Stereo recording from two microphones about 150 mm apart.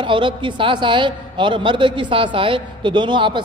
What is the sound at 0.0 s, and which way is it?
A man's voice, 35° right (ahead or behind).